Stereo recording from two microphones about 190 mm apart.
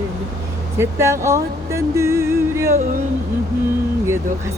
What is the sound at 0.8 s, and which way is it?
Music, 15° right (ahead or behind).